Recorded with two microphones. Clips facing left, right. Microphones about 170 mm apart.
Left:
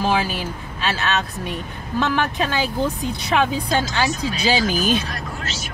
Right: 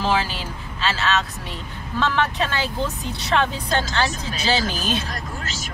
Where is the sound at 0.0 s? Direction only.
15° left (ahead or behind).